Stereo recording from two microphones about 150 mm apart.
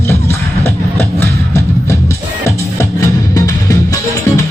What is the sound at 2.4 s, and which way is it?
Music, 20° left (ahead or behind).